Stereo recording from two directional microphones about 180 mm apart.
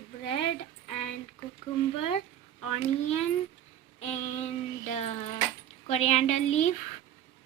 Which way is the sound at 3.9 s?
40° left (ahead or behind).